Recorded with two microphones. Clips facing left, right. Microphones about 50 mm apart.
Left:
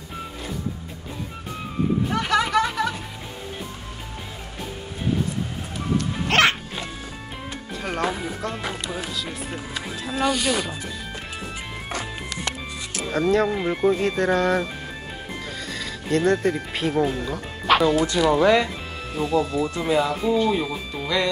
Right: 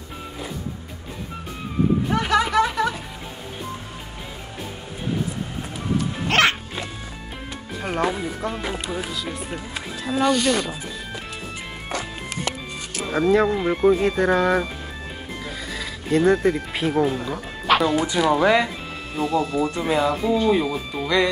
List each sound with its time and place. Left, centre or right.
2.0 s music: centre
5.9 s music: centre
7.8 s speech: centre
8.6 s speech: centre
8.9 s speech: centre
12.9 s speech: centre
15.4 s music: centre
17.8 s speech: centre
19.1 s speech: centre